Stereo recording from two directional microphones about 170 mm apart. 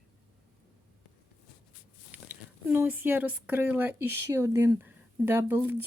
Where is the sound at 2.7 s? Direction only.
10° right (ahead or behind).